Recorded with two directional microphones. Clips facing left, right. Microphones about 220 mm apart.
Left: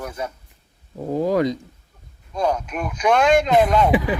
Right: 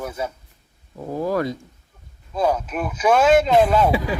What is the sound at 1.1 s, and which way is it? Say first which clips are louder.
Speech: left 3 dB; 20° left (ahead or behind).